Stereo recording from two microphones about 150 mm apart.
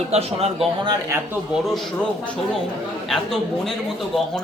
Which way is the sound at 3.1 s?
Centre (ahead or behind).